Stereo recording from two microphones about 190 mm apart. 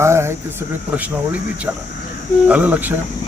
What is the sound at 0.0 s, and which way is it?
Speech, 15° right (ahead or behind).